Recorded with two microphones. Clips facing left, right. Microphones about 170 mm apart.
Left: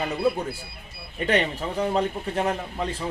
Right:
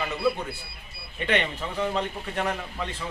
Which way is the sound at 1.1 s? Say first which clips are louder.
Left 3 dB; 40° left (ahead or behind).